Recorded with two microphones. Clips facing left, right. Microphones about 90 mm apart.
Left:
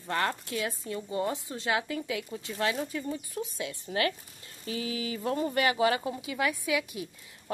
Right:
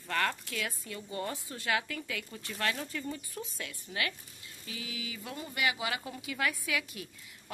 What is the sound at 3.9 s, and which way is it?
Speech, 35° left (ahead or behind).